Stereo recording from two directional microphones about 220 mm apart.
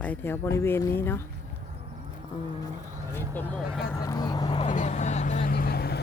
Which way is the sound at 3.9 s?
15° left (ahead or behind).